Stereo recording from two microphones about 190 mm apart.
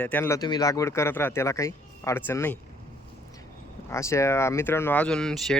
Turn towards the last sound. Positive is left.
turn(degrees=0)  # may be behind; listen again after turning